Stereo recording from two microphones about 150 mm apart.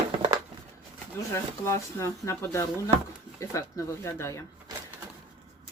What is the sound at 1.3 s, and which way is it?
Speech, 20° left (ahead or behind).